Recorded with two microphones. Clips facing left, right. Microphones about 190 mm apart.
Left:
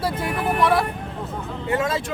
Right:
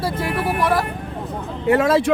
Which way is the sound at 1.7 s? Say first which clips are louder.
Right 7 dB; 65° right (ahead or behind).